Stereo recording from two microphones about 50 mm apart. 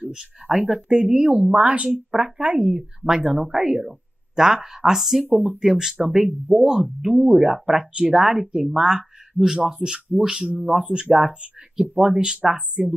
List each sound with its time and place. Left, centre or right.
0.1 s a woman's voice: centre
3.3 s a woman's voice: centre
5.2 s speech: right
5.6 s a woman's voice: centre
7.0 s a woman's voice: centre